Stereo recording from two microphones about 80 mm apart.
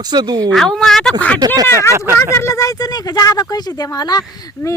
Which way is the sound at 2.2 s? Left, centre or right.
Left.